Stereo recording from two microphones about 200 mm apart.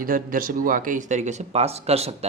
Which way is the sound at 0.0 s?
45° right (ahead or behind).